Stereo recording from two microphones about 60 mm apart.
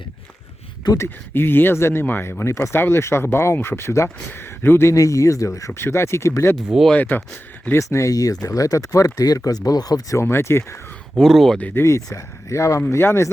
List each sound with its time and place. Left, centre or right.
0.9 s speech: left
4.9 s speech: left
5.8 s speech: left
6.9 s speech: left
7.8 s speech: left
10.2 s speech: left
11.2 s speech: centre
11.7 s speech: left
12.1 s speech: left
12.9 s speech: left